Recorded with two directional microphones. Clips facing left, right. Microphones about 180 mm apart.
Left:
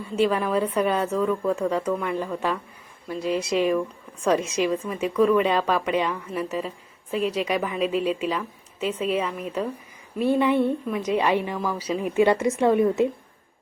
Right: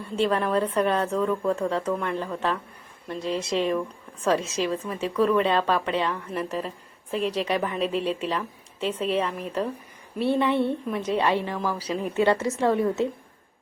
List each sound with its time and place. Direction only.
0.0 s a woman's voice: 5° left (ahead or behind)